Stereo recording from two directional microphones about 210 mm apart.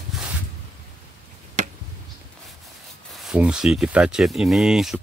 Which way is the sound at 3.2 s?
5° right (ahead or behind).